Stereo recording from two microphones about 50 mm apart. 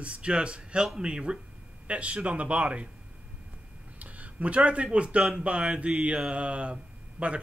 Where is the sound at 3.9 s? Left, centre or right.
Right.